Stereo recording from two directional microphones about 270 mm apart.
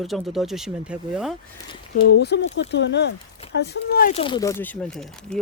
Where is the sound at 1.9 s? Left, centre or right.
Left.